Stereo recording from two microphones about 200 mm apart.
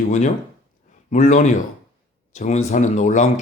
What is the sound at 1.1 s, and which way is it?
Speech, 40° left (ahead or behind).